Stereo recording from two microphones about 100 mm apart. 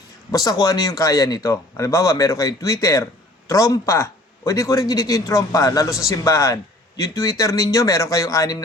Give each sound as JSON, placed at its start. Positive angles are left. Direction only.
{"t": 0.3, "sound": "a man's voice", "side_deg": 40}